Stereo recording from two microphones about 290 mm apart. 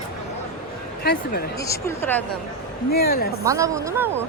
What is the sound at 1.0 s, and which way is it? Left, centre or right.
Speech, left.